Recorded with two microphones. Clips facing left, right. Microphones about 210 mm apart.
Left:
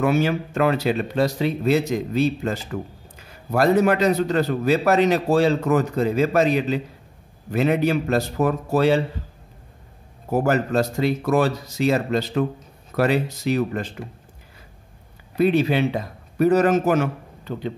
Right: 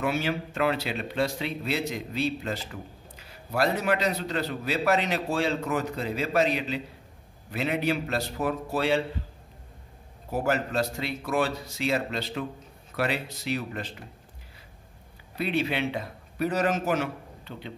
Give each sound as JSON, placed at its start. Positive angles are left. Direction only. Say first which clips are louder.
{"t": 0.0, "sound": "a man's voice", "louder": "left 8 dB", "side_deg": 45}
{"t": 10.3, "sound": "a man's voice", "louder": "left 7 dB", "side_deg": 45}
{"t": 15.3, "sound": "a man's voice", "louder": "left 9 dB", "side_deg": 45}